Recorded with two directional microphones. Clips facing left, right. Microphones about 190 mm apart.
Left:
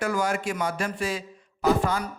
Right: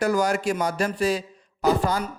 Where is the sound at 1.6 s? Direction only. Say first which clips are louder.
Right 1 dB; 35° right (ahead or behind).